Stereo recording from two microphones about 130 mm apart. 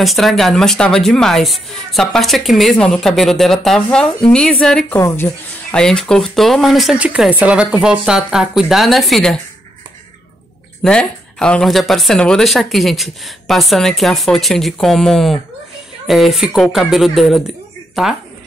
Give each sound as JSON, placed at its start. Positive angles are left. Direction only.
{"t": 0.0, "sound": "a woman's voice", "side_deg": 0}
{"t": 5.8, "sound": "speech", "side_deg": 5}
{"t": 10.8, "sound": "speech", "side_deg": 5}